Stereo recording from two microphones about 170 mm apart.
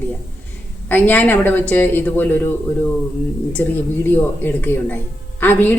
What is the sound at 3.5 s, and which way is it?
A woman's voice, 10° left (ahead or behind).